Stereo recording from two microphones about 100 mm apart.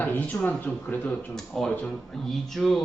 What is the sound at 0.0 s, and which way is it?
Speech, 15° left (ahead or behind).